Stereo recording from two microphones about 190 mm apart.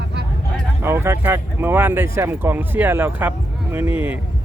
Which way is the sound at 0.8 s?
10° right (ahead or behind).